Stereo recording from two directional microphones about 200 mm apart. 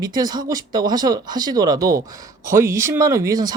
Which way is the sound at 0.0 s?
20° right (ahead or behind).